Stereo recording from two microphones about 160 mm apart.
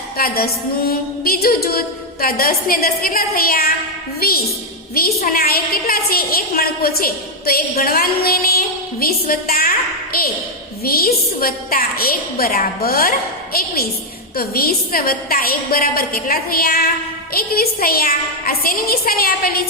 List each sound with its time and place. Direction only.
0.2 s a woman's voice: 70° left (ahead or behind)